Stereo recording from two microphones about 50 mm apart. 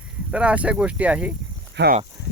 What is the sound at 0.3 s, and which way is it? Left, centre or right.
Speech, right.